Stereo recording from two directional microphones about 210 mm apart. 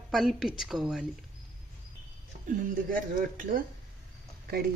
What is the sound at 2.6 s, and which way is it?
Speech, 40° right (ahead or behind).